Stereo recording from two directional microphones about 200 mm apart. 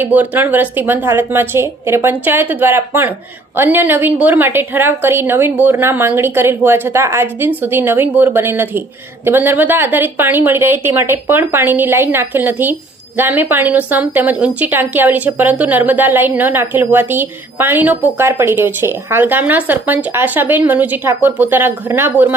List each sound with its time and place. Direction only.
0.0 s a woman's voice: 10° right (ahead or behind)